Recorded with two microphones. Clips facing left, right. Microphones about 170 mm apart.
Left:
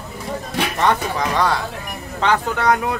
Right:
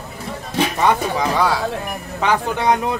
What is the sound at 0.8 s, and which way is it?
Speech, 10° right (ahead or behind).